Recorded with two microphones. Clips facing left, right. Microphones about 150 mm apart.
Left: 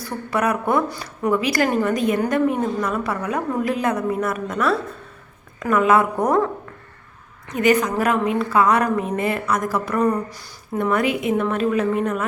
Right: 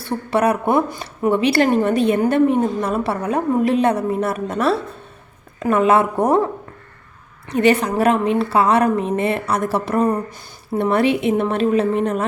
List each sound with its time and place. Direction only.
0.0 s a woman's voice: 30° right (ahead or behind)
7.5 s a woman's voice: 30° right (ahead or behind)